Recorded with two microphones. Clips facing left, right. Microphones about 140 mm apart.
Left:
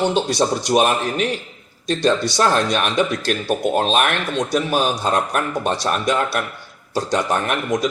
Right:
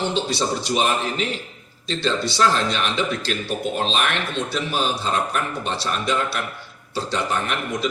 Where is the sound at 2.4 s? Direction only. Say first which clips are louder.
Even; 55° left (ahead or behind).